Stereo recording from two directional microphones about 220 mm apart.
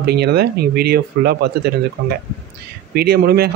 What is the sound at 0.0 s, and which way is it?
Speech, 45° right (ahead or behind).